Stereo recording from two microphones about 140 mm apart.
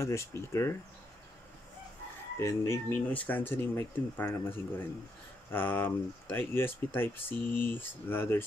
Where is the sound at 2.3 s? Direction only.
20° left (ahead or behind).